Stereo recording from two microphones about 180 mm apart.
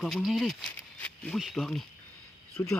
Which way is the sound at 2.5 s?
15° left (ahead or behind).